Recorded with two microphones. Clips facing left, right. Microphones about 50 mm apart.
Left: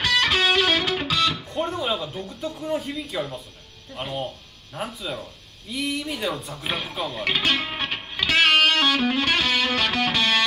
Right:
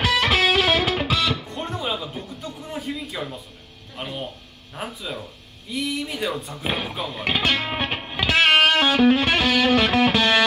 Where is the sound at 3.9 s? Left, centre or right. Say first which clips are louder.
Left 2 dB; centre.